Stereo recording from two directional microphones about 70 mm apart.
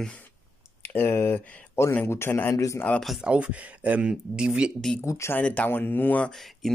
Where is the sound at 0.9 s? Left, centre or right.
Left.